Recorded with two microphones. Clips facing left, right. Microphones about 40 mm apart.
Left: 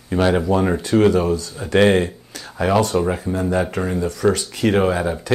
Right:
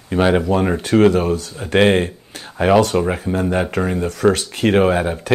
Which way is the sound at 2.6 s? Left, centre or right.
Right.